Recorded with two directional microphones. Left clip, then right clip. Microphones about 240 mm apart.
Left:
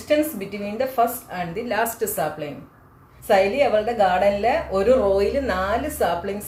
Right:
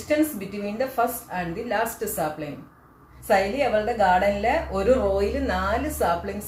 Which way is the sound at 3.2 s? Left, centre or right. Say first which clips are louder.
Left 4 dB; left.